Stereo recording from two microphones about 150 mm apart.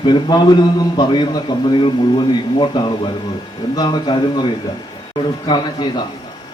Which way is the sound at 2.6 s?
35° left (ahead or behind).